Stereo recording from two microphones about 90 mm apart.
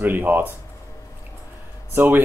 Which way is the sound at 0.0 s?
20° right (ahead or behind).